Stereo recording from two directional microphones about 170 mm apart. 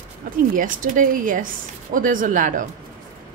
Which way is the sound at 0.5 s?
55° right (ahead or behind).